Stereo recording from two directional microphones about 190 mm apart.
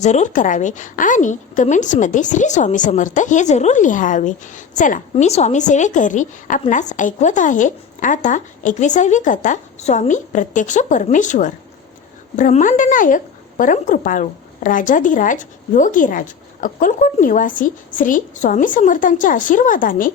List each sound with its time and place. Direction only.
0.0 s a woman's voice: 35° left (ahead or behind)